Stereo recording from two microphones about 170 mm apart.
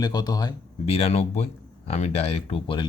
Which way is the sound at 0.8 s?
35° left (ahead or behind).